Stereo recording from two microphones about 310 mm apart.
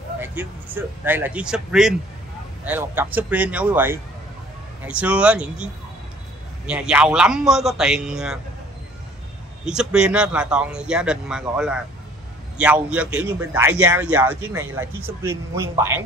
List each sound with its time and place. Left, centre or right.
0.2 s a man's voice: centre
9.8 s a man's voice: centre